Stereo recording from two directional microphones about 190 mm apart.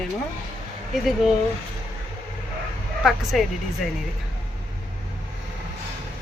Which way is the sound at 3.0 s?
Centre (ahead or behind).